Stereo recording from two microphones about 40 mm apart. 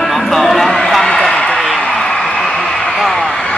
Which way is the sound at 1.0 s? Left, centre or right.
Centre.